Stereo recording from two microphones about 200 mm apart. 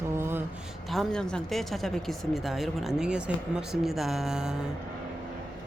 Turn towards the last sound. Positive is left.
turn(degrees=-5)  # may be behind; listen again after turning